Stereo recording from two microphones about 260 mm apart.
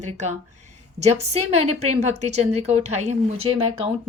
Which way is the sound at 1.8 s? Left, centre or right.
Right.